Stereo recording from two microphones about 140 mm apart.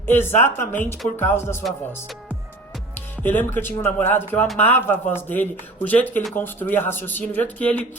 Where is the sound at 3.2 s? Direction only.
15° left (ahead or behind).